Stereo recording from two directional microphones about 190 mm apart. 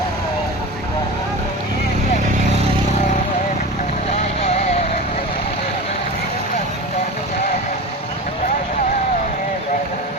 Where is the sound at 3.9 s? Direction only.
35° left (ahead or behind).